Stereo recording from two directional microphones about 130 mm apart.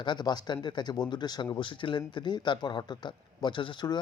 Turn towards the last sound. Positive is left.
turn(degrees=35)  # may be behind; listen again after turning